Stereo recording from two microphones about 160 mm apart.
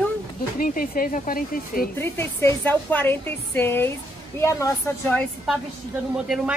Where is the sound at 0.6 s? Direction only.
65° left (ahead or behind).